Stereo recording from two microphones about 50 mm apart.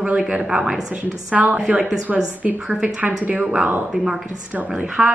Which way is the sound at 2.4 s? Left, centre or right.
Right.